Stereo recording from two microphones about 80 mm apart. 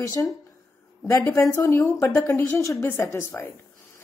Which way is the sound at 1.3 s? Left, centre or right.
Left.